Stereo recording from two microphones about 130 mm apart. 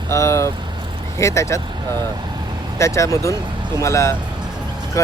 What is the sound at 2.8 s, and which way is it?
Speech, 25° left (ahead or behind).